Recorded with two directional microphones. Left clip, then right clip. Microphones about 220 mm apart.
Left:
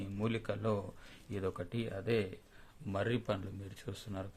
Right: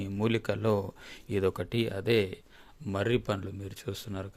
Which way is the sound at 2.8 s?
35° right (ahead or behind).